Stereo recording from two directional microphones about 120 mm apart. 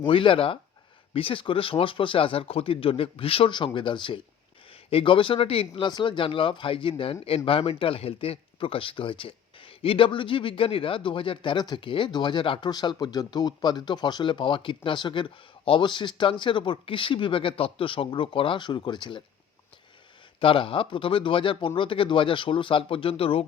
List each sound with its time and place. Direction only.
0.0 s a man's voice: 45° left (ahead or behind)
20.4 s a man's voice: 45° left (ahead or behind)